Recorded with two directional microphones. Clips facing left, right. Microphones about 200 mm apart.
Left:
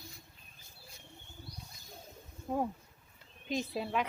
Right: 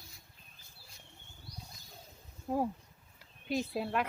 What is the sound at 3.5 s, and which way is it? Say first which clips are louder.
Speech: right 1 dB; 5° right (ahead or behind).